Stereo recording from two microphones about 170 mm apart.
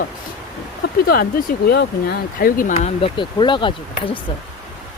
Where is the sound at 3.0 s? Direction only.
30° left (ahead or behind).